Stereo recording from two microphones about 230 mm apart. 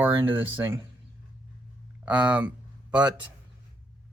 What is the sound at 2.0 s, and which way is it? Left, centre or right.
Speech, centre.